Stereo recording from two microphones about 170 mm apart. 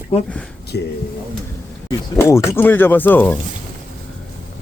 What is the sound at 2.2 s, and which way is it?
Speech, 15° left (ahead or behind).